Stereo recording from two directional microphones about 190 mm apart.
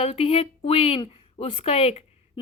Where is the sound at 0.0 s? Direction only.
30° left (ahead or behind).